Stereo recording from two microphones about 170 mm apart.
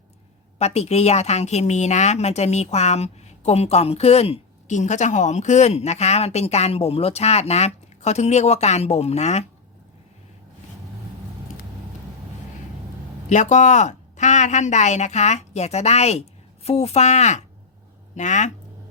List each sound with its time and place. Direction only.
0.6 s a woman's voice: 40° left (ahead or behind)
13.2 s a woman's voice: 45° left (ahead or behind)